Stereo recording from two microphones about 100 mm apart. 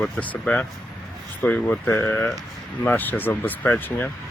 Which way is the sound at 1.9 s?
30° left (ahead or behind).